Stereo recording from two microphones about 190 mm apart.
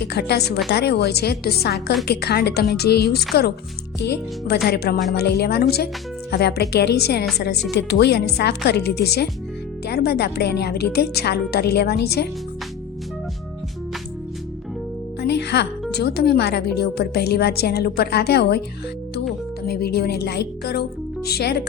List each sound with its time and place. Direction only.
0.1 s a woman's voice: 60° left (ahead or behind)
15.2 s music: 60° left (ahead or behind)
15.9 s a woman's voice: 60° left (ahead or behind)
19.6 s a woman's voice: 55° left (ahead or behind)